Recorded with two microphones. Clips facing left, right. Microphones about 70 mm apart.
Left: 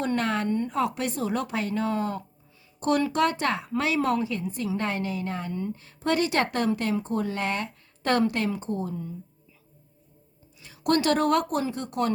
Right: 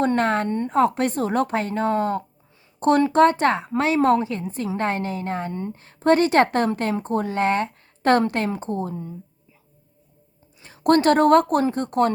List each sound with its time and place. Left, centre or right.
0.0 s speech: right
10.6 s speech: right